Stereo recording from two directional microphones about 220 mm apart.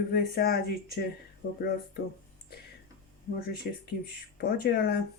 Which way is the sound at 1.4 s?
55° left (ahead or behind).